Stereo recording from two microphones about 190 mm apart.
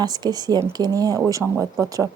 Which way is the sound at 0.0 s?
20° right (ahead or behind).